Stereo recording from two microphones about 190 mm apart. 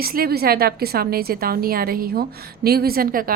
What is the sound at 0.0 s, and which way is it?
A woman's voice, 50° right (ahead or behind).